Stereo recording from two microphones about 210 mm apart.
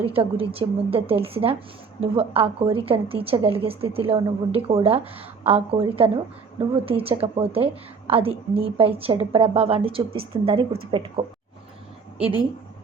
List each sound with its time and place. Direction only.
0.0 s a woman's voice: 25° right (ahead or behind)